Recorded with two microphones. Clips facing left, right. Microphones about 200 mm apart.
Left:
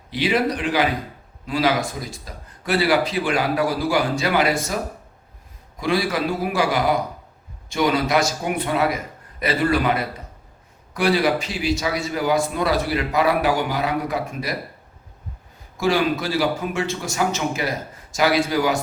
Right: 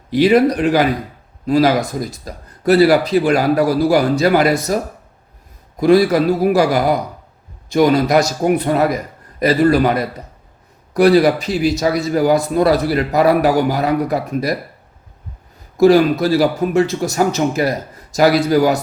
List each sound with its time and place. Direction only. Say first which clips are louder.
0.1 s a man's voice: right 9 dB; 45° right (ahead or behind)
5.8 s a man's voice: right 10 dB; 40° right (ahead or behind)
15.8 s a man's voice: right 10 dB; 40° right (ahead or behind)